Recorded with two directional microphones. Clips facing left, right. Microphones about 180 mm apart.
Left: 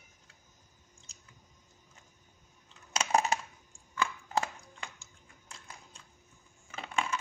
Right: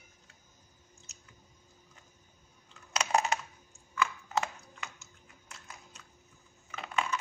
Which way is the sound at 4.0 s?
30° left (ahead or behind).